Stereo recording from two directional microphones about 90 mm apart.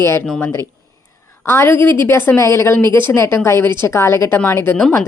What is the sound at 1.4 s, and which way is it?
A woman's voice, 25° left (ahead or behind).